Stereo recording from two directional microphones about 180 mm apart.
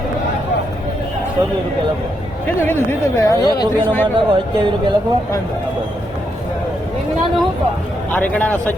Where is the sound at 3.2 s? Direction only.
20° left (ahead or behind).